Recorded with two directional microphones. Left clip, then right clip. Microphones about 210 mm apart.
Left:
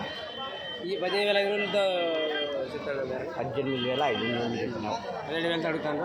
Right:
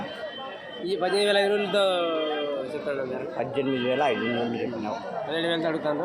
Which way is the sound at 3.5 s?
10° right (ahead or behind).